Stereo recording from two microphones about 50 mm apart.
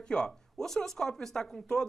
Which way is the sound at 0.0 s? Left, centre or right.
Centre.